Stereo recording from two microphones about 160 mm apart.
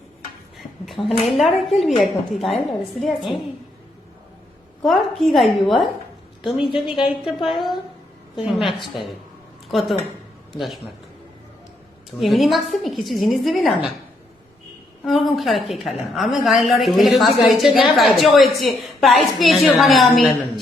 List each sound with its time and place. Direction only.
1.0 s a woman's voice: centre (ahead or behind)
4.8 s a woman's voice: centre (ahead or behind)
6.4 s a woman's voice: 35° left (ahead or behind)
7.3 s a woman's voice: centre (ahead or behind)
12.2 s a woman's voice: centre (ahead or behind)
15.0 s a woman's voice: centre (ahead or behind)